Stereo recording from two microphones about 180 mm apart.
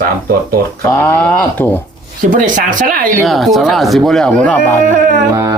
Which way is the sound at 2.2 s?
45° right (ahead or behind).